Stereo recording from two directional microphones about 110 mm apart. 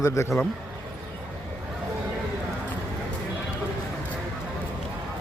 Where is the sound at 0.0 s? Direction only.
30° left (ahead or behind).